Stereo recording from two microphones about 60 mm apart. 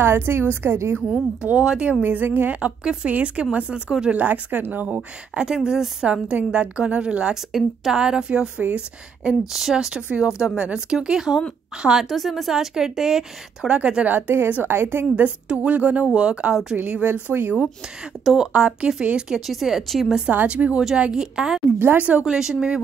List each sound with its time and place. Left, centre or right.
0.0 s a woman's voice: right
1.4 s speech: right
2.5 s a woman's voice: centre
3.1 s a woman's voice: right
4.2 s a woman's voice: right; by 6.2 s centre
6.2 s a woman's voice: centre
13.7 s a woman's voice: right
15.2 s a woman's voice: right
18.2 s speech: centre
18.5 s a woman's voice: centre
19.4 s speech: centre
20.2 s a woman's voice: right
22.2 s a woman's voice: centre